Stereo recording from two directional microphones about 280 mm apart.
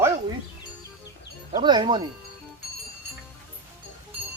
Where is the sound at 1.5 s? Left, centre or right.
Centre.